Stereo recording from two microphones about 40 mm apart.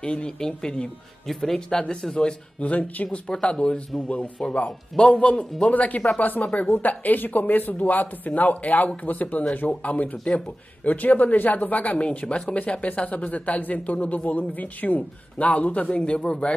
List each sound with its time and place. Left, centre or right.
0.0 s speech: left
1.3 s speech: centre
1.7 s speech: centre
2.6 s a man's voice: left
3.9 s speech: centre
4.4 s a man's voice: left
5.7 s a man's voice: left